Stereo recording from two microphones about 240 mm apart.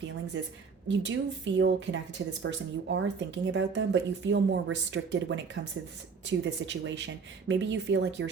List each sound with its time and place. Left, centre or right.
0.4 s a woman's voice: right